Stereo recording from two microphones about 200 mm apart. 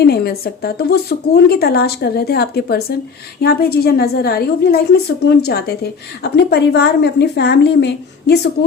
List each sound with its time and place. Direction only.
0.0 s a woman's voice: 55° left (ahead or behind)